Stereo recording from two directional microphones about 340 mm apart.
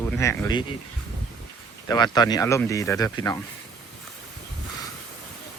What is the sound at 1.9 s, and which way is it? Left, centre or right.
Speech, centre.